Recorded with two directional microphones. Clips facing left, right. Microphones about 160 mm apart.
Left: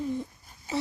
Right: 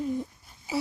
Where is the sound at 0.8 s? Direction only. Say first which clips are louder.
Right 1 dB; 10° right (ahead or behind).